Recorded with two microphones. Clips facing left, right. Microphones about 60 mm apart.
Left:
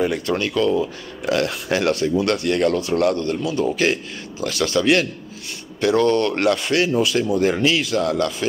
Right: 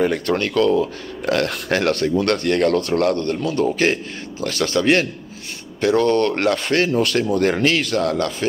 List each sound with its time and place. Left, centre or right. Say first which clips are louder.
0.0 s speech: right 2 dB; right
7.0 s speech: even; right